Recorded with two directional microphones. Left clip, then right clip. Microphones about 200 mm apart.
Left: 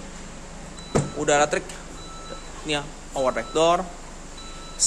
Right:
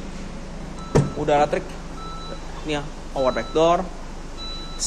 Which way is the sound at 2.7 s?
15° left (ahead or behind).